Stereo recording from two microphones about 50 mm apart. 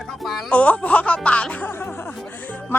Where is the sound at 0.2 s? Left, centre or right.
Centre.